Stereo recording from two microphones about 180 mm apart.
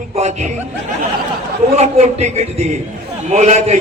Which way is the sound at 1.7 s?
40° right (ahead or behind).